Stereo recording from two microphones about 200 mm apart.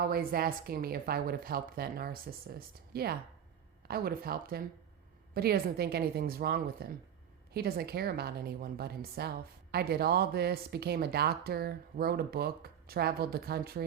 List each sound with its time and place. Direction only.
0.0 s a woman's voice: 50° right (ahead or behind)